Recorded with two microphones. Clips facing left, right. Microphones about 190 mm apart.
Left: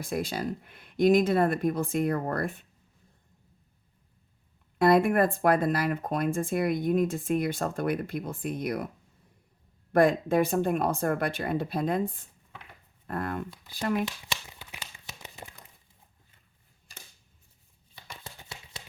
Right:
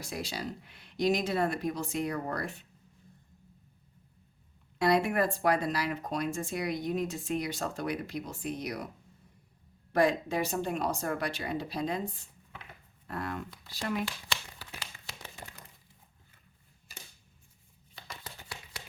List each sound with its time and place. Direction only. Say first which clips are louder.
0.0 s speech: left 6 dB; 55° left (ahead or behind)
4.8 s speech: left 5 dB; 50° left (ahead or behind)
9.9 s speech: left 5 dB; 50° left (ahead or behind)
14.0 s crumpling: left 3 dB; 20° left (ahead or behind)
16.9 s scissors: even; 5° right (ahead or behind)
18.1 s a sound: left 1 dB; 25° left (ahead or behind)